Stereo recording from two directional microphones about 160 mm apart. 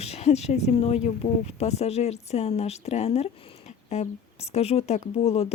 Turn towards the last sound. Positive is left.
turn(degrees=40)  # may be behind; listen again after turning